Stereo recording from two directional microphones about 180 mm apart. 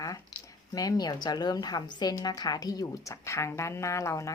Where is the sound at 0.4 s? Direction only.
20° left (ahead or behind).